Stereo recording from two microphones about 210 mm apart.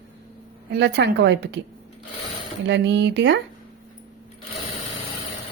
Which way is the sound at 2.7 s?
55° right (ahead or behind).